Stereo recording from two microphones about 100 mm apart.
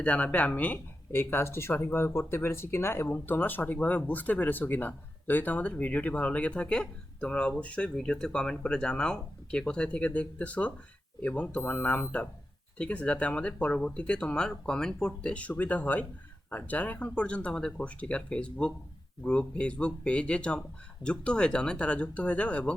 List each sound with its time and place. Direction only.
0.0 s speech: 15° left (ahead or behind)